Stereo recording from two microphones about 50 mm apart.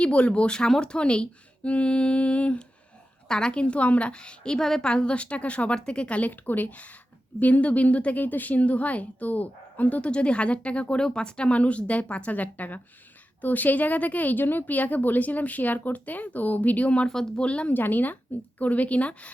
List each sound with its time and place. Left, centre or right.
0.0 s a woman's voice: left
17.1 s speech: centre
17.4 s a woman's voice: left
17.7 s a woman's voice: left